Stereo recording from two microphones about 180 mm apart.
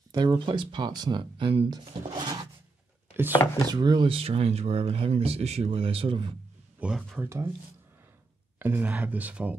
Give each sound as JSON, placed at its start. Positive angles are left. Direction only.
{"t": 0.1, "sound": "speech", "side_deg": -25}
{"t": 2.0, "sound": "filing", "side_deg": -20}
{"t": 3.6, "sound": "speech", "side_deg": -25}
{"t": 6.8, "sound": "speech", "side_deg": -5}
{"t": 7.2, "sound": "speech", "side_deg": -15}
{"t": 8.5, "sound": "speech", "side_deg": -10}